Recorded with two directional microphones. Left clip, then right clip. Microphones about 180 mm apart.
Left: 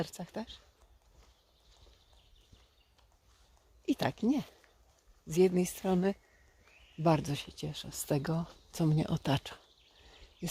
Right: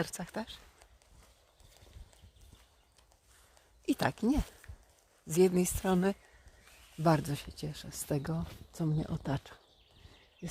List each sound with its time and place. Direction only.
0.0 s speech: 10° left (ahead or behind)
3.8 s speech: 5° left (ahead or behind); by 9.6 s 40° left (ahead or behind)